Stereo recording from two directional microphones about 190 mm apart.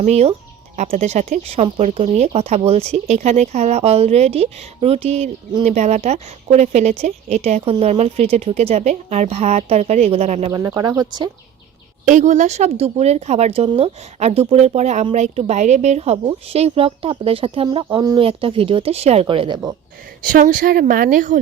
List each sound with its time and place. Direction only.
0.0 s speech: 35° right (ahead or behind)
10.5 s speech: 20° right (ahead or behind)
12.0 s speech: 40° right (ahead or behind); by 19.7 s 25° right (ahead or behind)
20.2 s speech: 45° right (ahead or behind)